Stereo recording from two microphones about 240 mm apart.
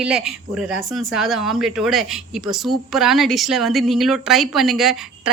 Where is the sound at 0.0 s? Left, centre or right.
Centre.